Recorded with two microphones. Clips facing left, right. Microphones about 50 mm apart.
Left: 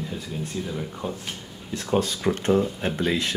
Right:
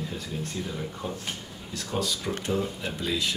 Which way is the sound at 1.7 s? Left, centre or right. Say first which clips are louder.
Left 6 dB; left.